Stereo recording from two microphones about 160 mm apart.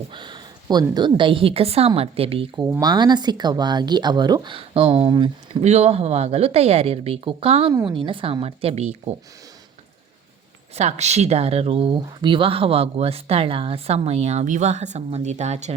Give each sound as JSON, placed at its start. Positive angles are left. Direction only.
{"t": 0.1, "sound": "speech", "side_deg": -30}
{"t": 2.6, "sound": "speech", "side_deg": -10}
{"t": 2.8, "sound": "speech", "side_deg": -25}
{"t": 5.6, "sound": "speech", "side_deg": -40}
{"t": 10.8, "sound": "speech", "side_deg": -45}